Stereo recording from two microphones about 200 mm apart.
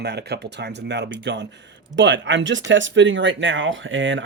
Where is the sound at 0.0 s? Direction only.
55° right (ahead or behind).